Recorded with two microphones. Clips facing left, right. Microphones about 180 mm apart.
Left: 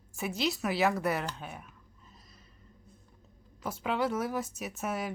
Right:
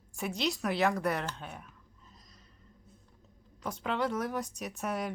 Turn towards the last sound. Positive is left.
turn(degrees=5)  # may be behind; listen again after turning